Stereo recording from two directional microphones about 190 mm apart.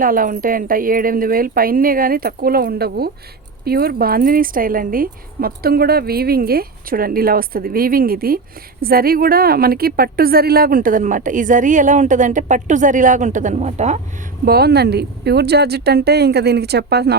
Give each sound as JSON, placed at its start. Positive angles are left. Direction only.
{"t": 0.0, "sound": "a woman's voice", "side_deg": -45}
{"t": 14.4, "sound": "speech", "side_deg": -55}